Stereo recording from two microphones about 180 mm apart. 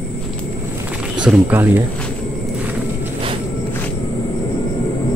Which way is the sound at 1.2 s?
10° right (ahead or behind).